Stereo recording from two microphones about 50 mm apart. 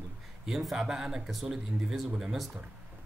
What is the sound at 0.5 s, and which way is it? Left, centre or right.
A man's voice, centre.